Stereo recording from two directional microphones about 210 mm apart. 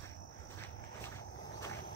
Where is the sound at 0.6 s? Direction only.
15° left (ahead or behind).